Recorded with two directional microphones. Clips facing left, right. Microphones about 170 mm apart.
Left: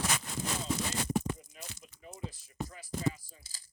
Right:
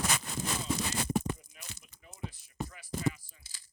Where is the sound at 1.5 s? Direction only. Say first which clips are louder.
Left 5 dB; 30° left (ahead or behind).